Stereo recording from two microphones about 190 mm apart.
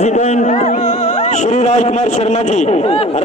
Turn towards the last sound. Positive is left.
turn(degrees=30)  # may be behind; listen again after turning